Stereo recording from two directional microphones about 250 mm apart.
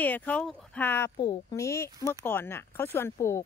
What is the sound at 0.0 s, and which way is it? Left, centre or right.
A woman's voice, centre.